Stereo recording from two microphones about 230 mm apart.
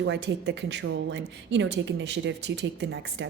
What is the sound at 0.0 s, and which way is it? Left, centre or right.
A woman's voice, right.